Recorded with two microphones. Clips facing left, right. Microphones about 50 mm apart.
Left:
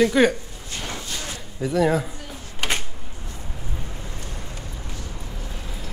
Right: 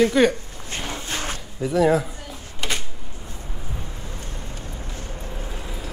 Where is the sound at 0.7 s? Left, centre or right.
Right.